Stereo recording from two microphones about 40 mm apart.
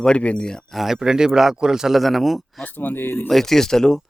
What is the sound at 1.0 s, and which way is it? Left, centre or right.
Speech, centre.